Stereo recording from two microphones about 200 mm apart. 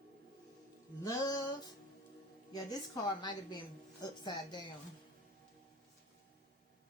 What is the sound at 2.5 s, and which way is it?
Speech, 20° left (ahead or behind).